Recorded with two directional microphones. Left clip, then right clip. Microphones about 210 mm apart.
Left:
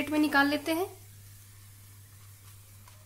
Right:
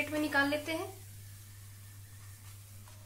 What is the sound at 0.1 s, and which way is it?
Speech, 55° left (ahead or behind).